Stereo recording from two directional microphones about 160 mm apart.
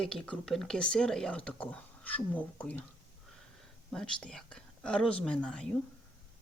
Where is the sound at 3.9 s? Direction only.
5° left (ahead or behind).